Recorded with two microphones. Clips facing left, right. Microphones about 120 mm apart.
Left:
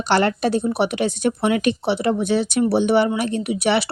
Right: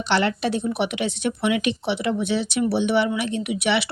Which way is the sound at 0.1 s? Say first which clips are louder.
Left 4 dB; 45° left (ahead or behind).